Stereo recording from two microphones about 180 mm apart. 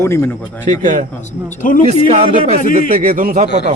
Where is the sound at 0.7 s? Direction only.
45° right (ahead or behind).